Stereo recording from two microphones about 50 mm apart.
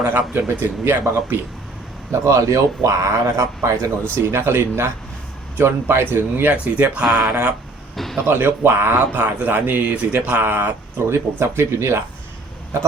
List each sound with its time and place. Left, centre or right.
0.0 s speech: right
0.6 s speech: right
1.1 s speech: right
2.2 s speech: right
6.5 s speech: right
6.9 s speech: centre
8.0 s speech: centre
8.3 s speech: right
10.5 s speech: right